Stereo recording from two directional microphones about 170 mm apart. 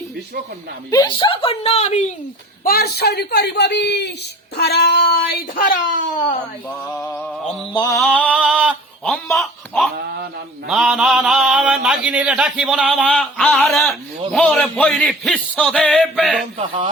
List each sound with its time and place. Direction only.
0.9 s speech: 25° left (ahead or behind); by 2.0 s 40° left (ahead or behind)
2.6 s a man's voice: 65° left (ahead or behind); by 4.1 s 85° left
4.5 s child singing: 70° left (ahead or behind); by 5.8 s 55° left (ahead or behind)
6.7 s music: 10° left (ahead or behind)
7.7 s mantra: 25° left (ahead or behind)
7.9 s mantra: 5° left (ahead or behind)
8.3 s mantra: 5° right (ahead or behind)
9.3 s a sound: centre (ahead or behind)
10.7 s mantra: centre (ahead or behind)
16.6 s speech: 35° right (ahead or behind)